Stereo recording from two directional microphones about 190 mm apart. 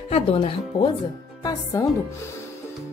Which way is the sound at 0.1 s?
30° left (ahead or behind).